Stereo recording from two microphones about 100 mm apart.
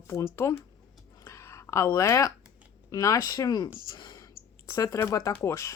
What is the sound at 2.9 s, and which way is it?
Speech, 35° left (ahead or behind).